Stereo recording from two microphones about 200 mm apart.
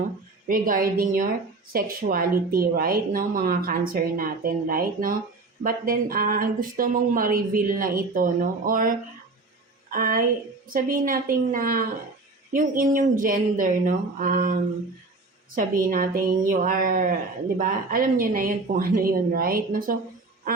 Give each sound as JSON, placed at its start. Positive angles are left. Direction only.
{"t": 0.4, "sound": "speech", "side_deg": -45}
{"t": 9.9, "sound": "speech", "side_deg": -45}